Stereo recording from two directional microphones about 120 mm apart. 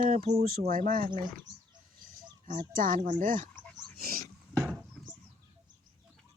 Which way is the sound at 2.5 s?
90° right.